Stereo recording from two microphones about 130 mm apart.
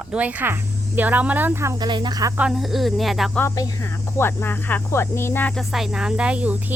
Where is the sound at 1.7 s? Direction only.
35° right (ahead or behind).